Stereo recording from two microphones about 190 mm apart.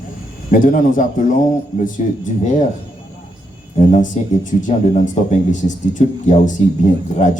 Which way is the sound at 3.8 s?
40° left (ahead or behind).